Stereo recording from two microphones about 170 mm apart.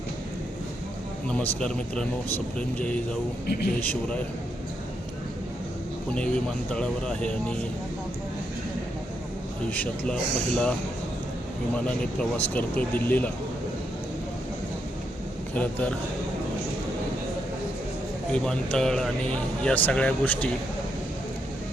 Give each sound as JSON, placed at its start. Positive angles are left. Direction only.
{"t": 1.3, "sound": "a man's voice", "side_deg": 5}
{"t": 3.4, "sound": "a man's voice", "side_deg": 65}
{"t": 3.8, "sound": "speech", "side_deg": 10}
{"t": 6.1, "sound": "a man's voice", "side_deg": 5}
{"t": 9.6, "sound": "speech", "side_deg": 10}
{"t": 12.5, "sound": "speech", "side_deg": 10}
{"t": 15.5, "sound": "speech", "side_deg": 10}
{"t": 18.3, "sound": "speech", "side_deg": 5}